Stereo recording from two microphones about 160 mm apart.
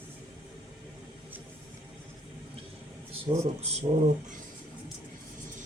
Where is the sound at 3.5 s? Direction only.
40° right (ahead or behind).